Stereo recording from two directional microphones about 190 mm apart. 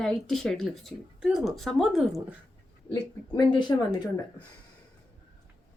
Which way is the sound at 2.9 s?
25° left (ahead or behind).